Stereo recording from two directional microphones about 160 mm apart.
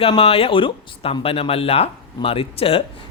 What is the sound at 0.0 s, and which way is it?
Speech, 35° left (ahead or behind).